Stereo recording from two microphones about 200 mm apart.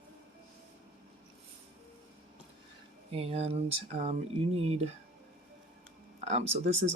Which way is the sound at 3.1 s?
30° right (ahead or behind).